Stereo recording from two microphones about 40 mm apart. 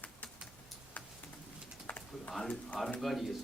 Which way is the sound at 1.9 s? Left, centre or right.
Left.